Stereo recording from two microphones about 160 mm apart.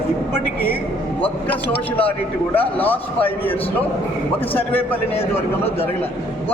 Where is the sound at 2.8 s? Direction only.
10° left (ahead or behind).